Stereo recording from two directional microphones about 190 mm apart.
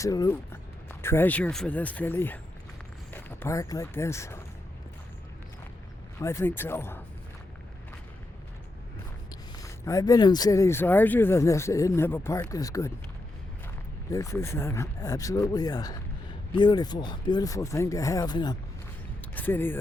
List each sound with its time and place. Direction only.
0.0 s speech: 15° left (ahead or behind)
6.1 s speech: 15° left (ahead or behind)
9.6 s speech: 15° left (ahead or behind)
14.1 s speech: 15° left (ahead or behind)
19.3 s speech: 10° left (ahead or behind)